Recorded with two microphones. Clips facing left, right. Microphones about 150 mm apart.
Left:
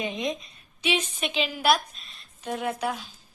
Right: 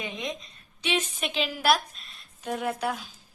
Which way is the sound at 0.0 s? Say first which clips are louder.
Left 5 dB; 20° left (ahead or behind).